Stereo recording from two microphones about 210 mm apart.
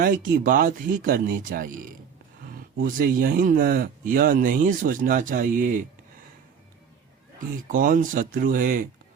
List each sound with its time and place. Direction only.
0.0 s speech: 40° right (ahead or behind)
7.3 s speech: 40° right (ahead or behind)